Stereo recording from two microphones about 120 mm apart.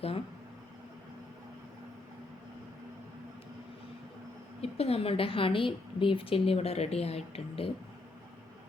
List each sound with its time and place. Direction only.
4.6 s a woman's voice: 55° left (ahead or behind)